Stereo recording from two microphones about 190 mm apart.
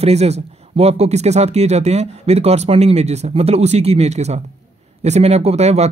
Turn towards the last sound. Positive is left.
turn(degrees=-35)  # may be behind; listen again after turning